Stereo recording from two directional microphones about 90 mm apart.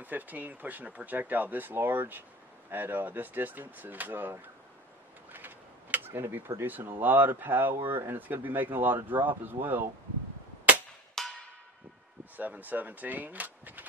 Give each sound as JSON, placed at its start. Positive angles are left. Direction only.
{"t": 0.0, "sound": "speech", "side_deg": -20}
{"t": 11.2, "sound": "a sound", "side_deg": 5}
{"t": 12.4, "sound": "speech", "side_deg": -20}